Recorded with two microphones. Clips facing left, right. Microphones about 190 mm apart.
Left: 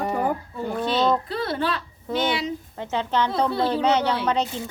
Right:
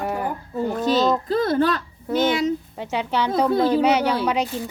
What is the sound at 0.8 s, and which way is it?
Speech, 5° right (ahead or behind).